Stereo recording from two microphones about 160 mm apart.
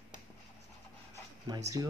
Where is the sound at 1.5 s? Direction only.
25° right (ahead or behind).